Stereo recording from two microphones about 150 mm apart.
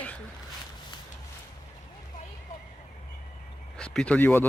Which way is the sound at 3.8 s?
5° left (ahead or behind).